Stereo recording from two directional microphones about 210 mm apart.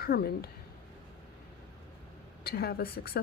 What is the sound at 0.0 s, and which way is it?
Speech, 45° left (ahead or behind).